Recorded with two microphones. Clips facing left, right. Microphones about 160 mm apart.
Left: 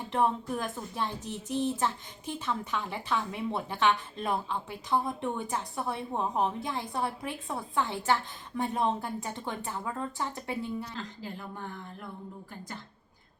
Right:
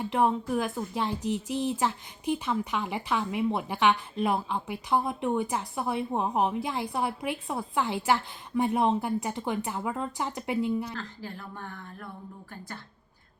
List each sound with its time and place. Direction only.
0.1 s speech: 10° right (ahead or behind)
10.9 s speech: 15° left (ahead or behind)